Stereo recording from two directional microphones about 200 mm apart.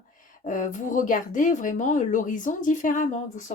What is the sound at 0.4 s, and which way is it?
Speech, 40° left (ahead or behind).